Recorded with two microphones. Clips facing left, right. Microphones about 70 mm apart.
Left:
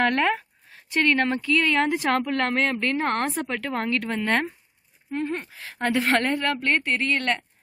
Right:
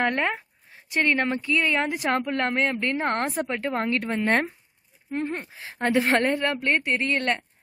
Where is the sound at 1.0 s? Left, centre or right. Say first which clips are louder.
Left 2 dB; centre.